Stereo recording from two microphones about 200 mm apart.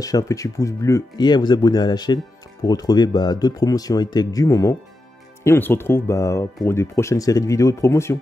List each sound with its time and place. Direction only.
0.0 s speech: 15° left (ahead or behind)